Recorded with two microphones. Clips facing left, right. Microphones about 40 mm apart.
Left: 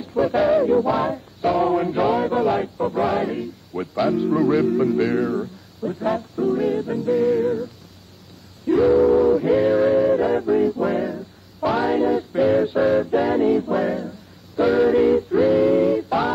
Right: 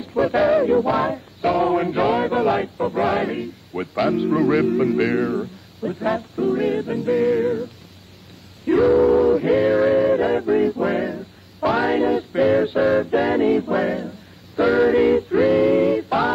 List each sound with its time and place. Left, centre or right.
0.0 s music: right
1.0 s male singing: right
4.6 s music: right
4.9 s speech: right
5.2 s music: right
14.6 s a sound: right